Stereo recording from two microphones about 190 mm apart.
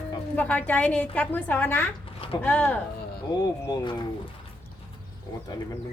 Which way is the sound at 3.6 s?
25° left (ahead or behind).